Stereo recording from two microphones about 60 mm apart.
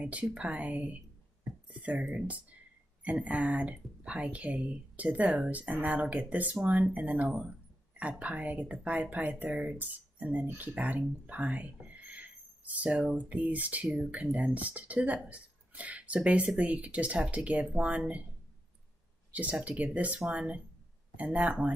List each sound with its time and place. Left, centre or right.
0.0 s speech: right
1.7 s a sound: right
2.2 s speech: right
13.8 s speech: centre
14.3 s speech: right
19.3 s speech: right